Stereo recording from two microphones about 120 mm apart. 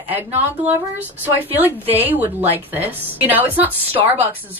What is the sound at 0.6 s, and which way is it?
Speech, 15° right (ahead or behind).